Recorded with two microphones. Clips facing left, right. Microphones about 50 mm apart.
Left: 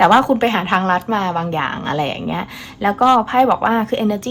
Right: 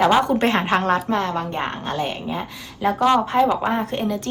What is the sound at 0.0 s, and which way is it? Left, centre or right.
Speech, left.